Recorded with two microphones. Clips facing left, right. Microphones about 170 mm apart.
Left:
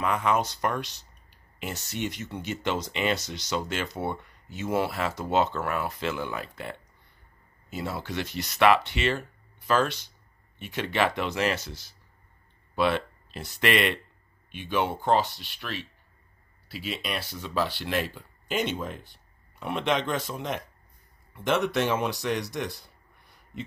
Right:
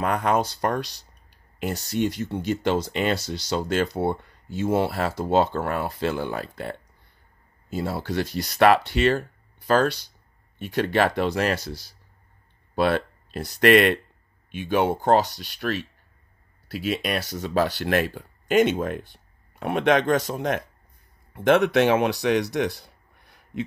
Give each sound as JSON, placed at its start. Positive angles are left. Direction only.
{"t": 0.0, "sound": "speech", "side_deg": -40}
{"t": 21.5, "sound": "speech", "side_deg": -65}